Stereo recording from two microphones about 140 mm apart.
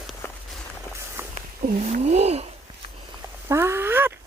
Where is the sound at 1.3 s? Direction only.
50° right (ahead or behind).